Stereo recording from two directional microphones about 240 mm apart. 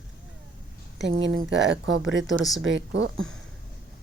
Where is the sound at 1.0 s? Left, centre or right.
Right.